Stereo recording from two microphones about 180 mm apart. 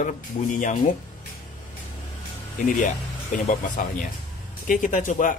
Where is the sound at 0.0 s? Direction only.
45° left (ahead or behind).